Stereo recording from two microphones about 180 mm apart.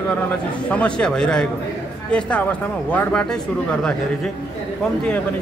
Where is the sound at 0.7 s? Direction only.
5° left (ahead or behind).